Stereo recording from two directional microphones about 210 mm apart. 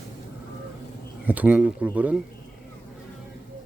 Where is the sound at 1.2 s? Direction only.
5° right (ahead or behind).